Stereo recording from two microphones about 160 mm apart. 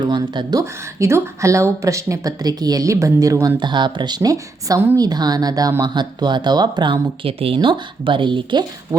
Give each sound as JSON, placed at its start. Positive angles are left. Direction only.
{"t": 0.0, "sound": "speech", "side_deg": -30}
{"t": 0.6, "sound": "speech", "side_deg": -15}
{"t": 3.6, "sound": "speech", "side_deg": -30}